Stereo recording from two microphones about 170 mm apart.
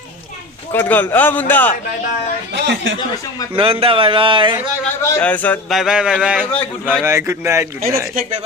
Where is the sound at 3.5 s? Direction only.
35° right (ahead or behind).